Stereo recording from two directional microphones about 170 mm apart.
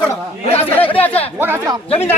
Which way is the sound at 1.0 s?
35° left (ahead or behind).